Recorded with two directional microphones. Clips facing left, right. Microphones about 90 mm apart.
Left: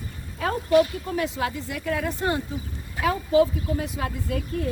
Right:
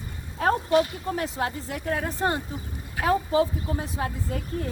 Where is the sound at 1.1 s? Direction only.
35° right (ahead or behind).